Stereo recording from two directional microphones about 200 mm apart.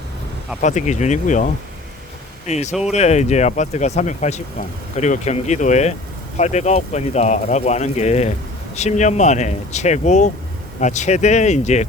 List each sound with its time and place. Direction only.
0.6 s speech: 35° left (ahead or behind)
2.5 s speech: 35° left (ahead or behind)